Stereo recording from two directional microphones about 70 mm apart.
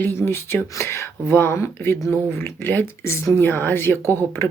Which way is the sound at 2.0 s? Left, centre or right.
Centre.